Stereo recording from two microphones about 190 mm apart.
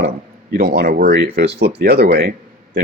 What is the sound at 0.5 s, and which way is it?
Speech, 50° right (ahead or behind).